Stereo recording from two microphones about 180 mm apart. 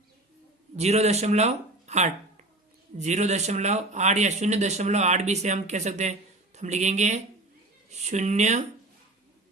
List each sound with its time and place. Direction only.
0.8 s speech: 35° right (ahead or behind)